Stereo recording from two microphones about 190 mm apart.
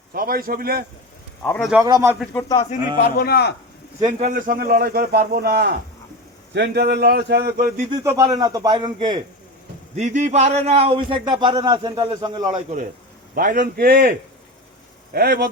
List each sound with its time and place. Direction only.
0.1 s a man's voice: 50° right (ahead or behind)
1.5 s a man's voice: 5° left (ahead or behind)
1.8 s a man's voice: 15° right (ahead or behind)
2.3 s a man's voice: 15° left (ahead or behind)
3.2 s a man's voice: 55° left (ahead or behind)
4.2 s a man's voice: 45° right (ahead or behind)
7.9 s a man's voice: 20° right (ahead or behind)
9.9 s a man's voice: 40° right (ahead or behind); by 12.6 s 25° right (ahead or behind)
13.3 s a man's voice: 50° right (ahead or behind)